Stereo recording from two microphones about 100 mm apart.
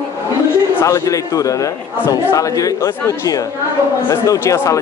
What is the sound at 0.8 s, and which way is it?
Speech, 30° left (ahead or behind).